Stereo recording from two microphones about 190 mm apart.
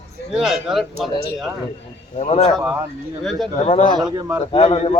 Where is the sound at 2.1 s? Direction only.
35° left (ahead or behind).